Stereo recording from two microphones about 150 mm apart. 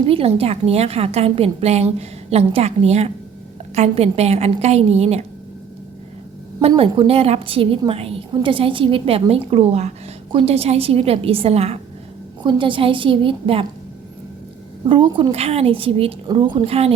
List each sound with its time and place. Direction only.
0.0 s a woman's voice: 40° right (ahead or behind)
6.6 s a woman's voice: 40° right (ahead or behind)
12.4 s a woman's voice: 35° right (ahead or behind)
14.8 s a woman's voice: 35° right (ahead or behind)